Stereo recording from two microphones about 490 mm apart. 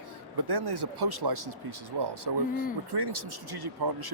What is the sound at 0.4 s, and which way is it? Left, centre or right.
Speech, right.